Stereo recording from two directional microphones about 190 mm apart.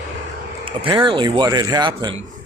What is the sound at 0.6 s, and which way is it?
Speech, 25° right (ahead or behind).